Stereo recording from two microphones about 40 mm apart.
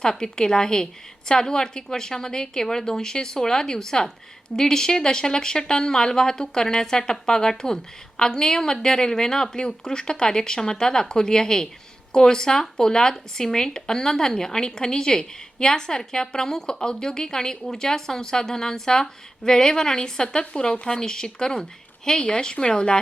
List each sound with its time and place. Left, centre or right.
0.0 s speech: centre